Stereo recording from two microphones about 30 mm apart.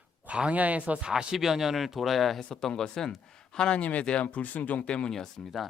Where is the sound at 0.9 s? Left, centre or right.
Right.